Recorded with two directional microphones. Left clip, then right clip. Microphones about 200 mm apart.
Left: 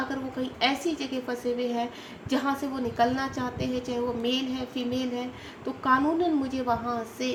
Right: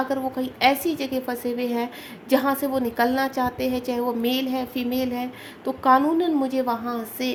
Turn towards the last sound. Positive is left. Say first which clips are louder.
# right 2 dB
turn(degrees=-55)  # may be behind; listen again after turning